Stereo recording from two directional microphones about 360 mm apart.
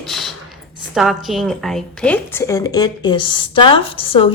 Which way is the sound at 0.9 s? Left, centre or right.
Centre.